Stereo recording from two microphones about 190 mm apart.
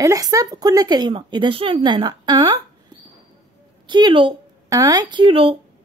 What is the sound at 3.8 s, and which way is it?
Speech, 25° right (ahead or behind).